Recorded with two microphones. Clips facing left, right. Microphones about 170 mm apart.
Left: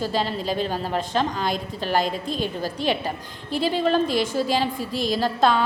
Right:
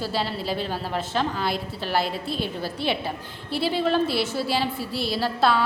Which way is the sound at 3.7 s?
10° right (ahead or behind).